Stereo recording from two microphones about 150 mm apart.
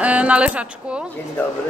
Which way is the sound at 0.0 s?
10° right (ahead or behind).